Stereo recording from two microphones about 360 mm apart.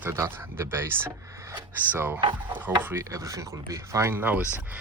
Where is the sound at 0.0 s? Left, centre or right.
Centre.